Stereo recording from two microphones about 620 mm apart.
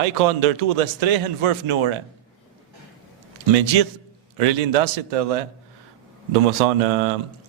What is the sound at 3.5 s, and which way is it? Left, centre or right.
A man's voice, right.